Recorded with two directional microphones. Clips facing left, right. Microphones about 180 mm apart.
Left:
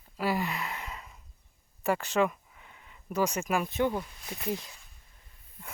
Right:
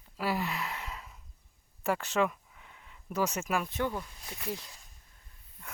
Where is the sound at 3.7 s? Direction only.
25° left (ahead or behind).